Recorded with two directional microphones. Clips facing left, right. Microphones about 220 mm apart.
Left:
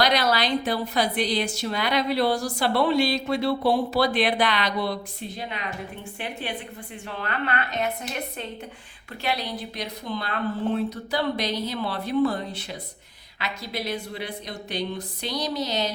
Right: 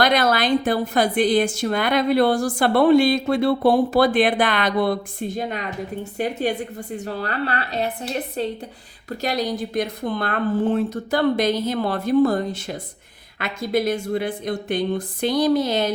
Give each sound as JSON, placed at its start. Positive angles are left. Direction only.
{"t": 0.0, "sound": "a woman's voice", "side_deg": -50}